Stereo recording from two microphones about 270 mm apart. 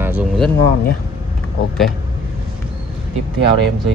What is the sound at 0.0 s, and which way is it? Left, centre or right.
Speech, centre.